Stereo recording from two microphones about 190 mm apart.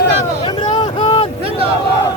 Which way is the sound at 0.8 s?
30° left (ahead or behind).